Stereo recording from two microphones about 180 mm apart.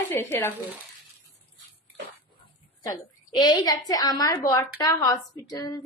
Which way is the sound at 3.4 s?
20° left (ahead or behind).